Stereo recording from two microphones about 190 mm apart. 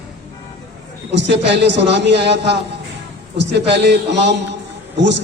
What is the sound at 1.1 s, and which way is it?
A man's voice, 65° right (ahead or behind).